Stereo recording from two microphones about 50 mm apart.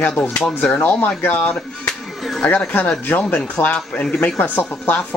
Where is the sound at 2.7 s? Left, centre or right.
Left.